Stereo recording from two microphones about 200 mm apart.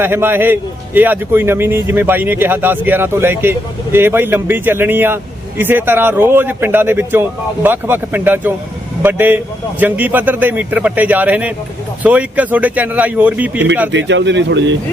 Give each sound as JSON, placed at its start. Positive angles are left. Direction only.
{"t": 0.0, "sound": "a man's voice", "side_deg": -10}
{"t": 13.9, "sound": "speech", "side_deg": -65}